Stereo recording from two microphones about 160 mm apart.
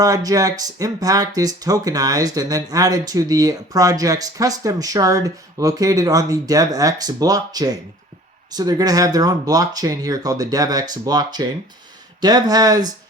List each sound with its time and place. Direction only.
0.0 s speech: 20° right (ahead or behind)